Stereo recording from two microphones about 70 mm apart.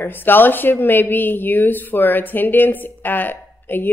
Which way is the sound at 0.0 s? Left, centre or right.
Left.